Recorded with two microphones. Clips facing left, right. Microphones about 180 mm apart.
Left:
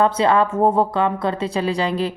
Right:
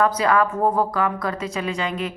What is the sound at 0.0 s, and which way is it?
A woman's voice, 25° left (ahead or behind).